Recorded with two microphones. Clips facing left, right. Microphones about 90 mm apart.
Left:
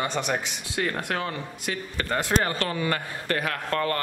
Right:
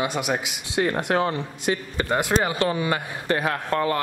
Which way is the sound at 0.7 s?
25° right (ahead or behind).